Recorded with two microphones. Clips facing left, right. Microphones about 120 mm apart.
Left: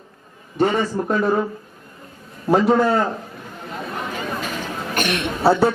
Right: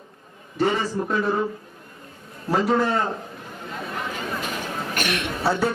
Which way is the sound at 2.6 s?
30° left (ahead or behind).